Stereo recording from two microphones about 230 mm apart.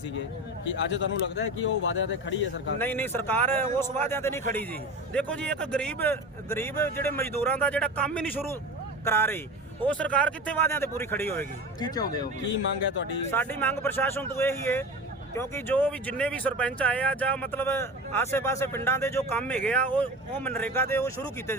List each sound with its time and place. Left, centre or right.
0.6 s speech: left
2.7 s speech: centre
12.5 s speech: left
13.3 s speech: centre